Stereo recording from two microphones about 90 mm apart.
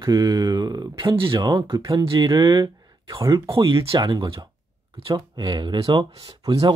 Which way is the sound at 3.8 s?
55° right (ahead or behind).